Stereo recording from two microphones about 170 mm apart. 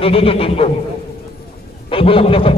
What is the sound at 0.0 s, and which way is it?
Speech, 35° left (ahead or behind).